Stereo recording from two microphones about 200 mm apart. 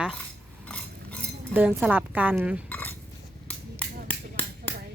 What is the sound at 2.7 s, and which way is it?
Dishes, 10° left (ahead or behind).